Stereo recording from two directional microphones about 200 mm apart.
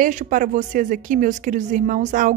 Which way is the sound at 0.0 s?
40° right (ahead or behind).